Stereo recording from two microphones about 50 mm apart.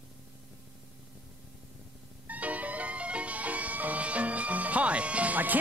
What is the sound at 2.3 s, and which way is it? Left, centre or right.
Music, right.